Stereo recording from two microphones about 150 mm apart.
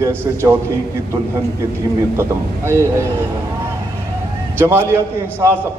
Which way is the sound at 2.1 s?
20° right (ahead or behind).